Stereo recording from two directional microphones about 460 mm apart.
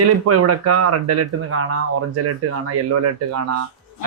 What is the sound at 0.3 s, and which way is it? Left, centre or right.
Speech, right.